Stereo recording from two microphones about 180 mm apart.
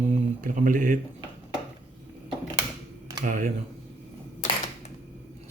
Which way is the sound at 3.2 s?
45° right (ahead or behind).